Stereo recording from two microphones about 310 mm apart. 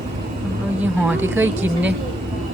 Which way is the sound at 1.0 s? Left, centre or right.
Centre.